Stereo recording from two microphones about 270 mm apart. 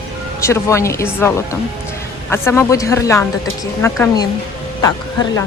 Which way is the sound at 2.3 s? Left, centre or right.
Centre.